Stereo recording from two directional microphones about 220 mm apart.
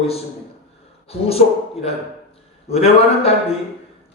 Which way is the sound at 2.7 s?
25° left (ahead or behind).